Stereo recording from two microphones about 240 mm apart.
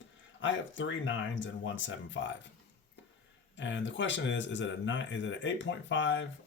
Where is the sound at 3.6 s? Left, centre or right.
Left.